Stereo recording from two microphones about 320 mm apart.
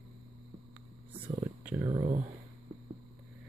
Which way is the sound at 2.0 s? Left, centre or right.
Right.